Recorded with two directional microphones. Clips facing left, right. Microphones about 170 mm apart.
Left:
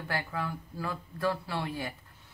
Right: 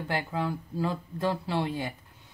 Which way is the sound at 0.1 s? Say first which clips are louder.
Right 4 dB; 20° right (ahead or behind).